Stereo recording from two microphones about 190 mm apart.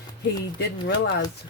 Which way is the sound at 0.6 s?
60° left (ahead or behind).